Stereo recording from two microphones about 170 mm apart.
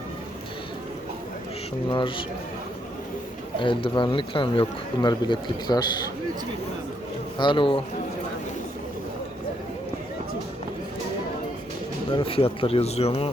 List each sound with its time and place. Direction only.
1.9 s a man's voice: 30° left (ahead or behind)
3.6 s a man's voice: 30° left (ahead or behind)
7.3 s a man's voice: 30° left (ahead or behind)
12.1 s speech: 35° left (ahead or behind)